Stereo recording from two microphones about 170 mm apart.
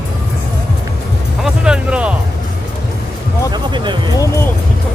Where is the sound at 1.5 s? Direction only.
5° right (ahead or behind).